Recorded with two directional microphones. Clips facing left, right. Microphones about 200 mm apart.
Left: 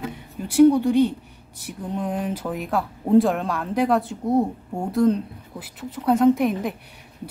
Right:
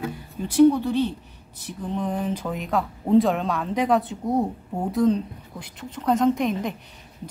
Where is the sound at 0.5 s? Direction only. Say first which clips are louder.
Left 2 dB; 10° left (ahead or behind).